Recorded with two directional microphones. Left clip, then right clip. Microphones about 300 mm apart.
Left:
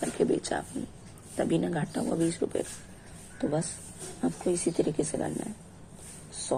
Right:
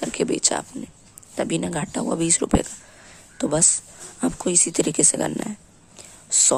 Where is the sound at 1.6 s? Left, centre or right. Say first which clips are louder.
Right 5 dB; right.